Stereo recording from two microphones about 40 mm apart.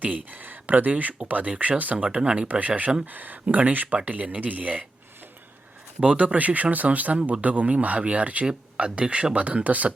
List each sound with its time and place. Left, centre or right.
0.0 s speech: right
2.2 s speech: right
2.5 s speech: right
6.0 s speech: right
8.4 s speech: right